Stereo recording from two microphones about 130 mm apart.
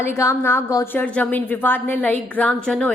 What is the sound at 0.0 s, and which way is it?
A woman's voice, 20° left (ahead or behind).